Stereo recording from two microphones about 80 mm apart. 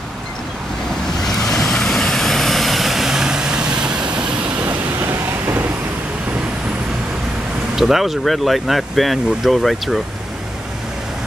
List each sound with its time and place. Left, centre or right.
1.2 s vehicle: centre
4.6 s train: right
7.7 s speech: centre